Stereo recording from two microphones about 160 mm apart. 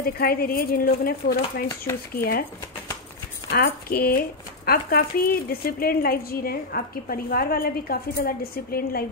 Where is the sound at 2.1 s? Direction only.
70° left (ahead or behind).